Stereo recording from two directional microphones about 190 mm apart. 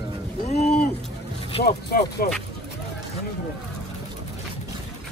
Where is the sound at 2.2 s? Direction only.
50° left (ahead or behind).